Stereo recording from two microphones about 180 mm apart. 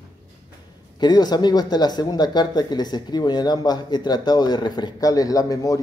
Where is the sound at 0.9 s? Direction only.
25° left (ahead or behind).